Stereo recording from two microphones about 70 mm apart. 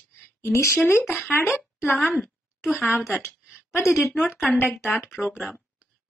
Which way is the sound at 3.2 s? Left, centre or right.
Left.